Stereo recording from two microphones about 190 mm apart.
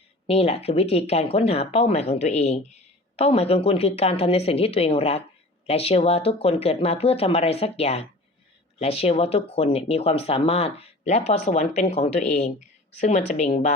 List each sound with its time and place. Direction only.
0.3 s speech: 30° left (ahead or behind)